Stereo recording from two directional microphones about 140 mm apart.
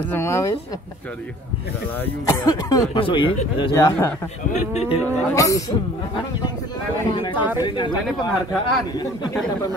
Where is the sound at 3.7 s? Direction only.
20° left (ahead or behind).